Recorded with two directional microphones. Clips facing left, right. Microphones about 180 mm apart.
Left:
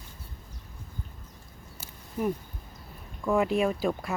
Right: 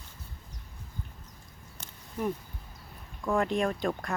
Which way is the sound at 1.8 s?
5° left (ahead or behind).